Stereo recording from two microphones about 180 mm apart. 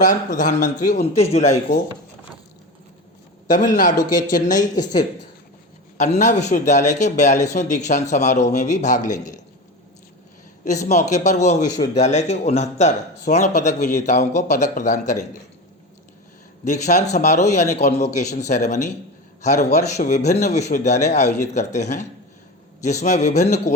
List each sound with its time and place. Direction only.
0.0 s a man's voice: 45° left (ahead or behind)
3.4 s a man's voice: 45° left (ahead or behind)
4.8 s speech: 20° left (ahead or behind)
6.0 s a man's voice: 40° left (ahead or behind)
10.6 s a man's voice: 40° left (ahead or behind)
11.6 s speech: 20° left (ahead or behind)
11.9 s a man's voice: 40° left (ahead or behind)
16.6 s a man's voice: 40° left (ahead or behind)